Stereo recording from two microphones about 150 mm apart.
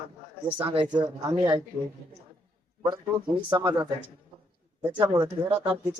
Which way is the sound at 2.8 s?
30° right (ahead or behind).